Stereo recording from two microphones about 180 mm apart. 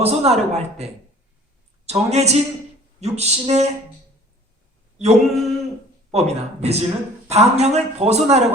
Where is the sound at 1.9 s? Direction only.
35° right (ahead or behind).